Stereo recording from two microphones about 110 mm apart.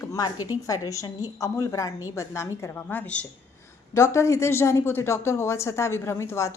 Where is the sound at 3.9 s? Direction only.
25° left (ahead or behind).